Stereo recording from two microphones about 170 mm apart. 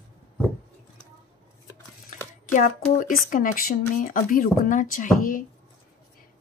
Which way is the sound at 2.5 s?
50° left (ahead or behind).